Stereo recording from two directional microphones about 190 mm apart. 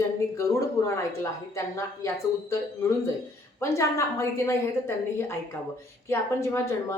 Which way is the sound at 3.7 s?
15° left (ahead or behind).